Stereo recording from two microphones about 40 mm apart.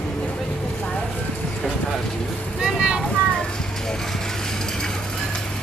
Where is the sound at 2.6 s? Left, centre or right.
Centre.